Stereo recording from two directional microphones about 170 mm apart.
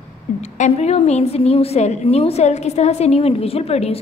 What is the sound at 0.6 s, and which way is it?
A woman's voice, 40° left (ahead or behind).